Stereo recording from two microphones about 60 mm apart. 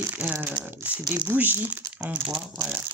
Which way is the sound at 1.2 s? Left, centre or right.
Right.